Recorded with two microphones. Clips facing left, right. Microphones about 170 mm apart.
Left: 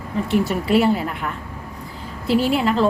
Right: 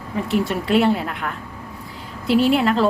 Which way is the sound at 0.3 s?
Centre (ahead or behind).